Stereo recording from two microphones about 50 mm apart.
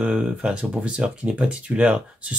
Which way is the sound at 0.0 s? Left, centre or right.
Right.